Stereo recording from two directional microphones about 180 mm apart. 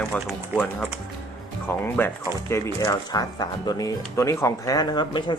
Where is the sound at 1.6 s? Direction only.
10° left (ahead or behind).